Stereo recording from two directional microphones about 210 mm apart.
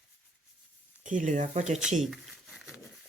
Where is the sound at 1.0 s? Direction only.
35° right (ahead or behind).